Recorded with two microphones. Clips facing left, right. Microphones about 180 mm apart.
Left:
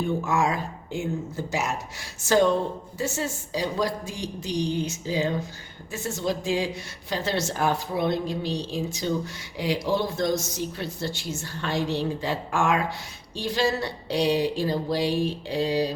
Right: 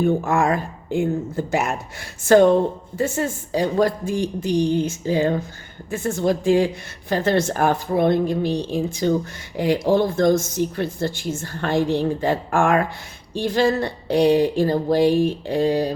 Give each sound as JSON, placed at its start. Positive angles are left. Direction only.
{"t": 0.0, "sound": "a woman's voice", "side_deg": -55}